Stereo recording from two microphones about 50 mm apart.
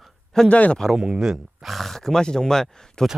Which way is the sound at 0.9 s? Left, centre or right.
Centre.